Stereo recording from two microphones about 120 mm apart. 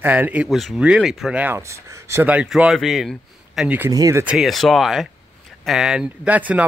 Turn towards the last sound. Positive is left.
turn(degrees=-10)  # may be behind; listen again after turning